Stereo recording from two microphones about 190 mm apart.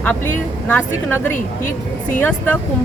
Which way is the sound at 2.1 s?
10° left (ahead or behind).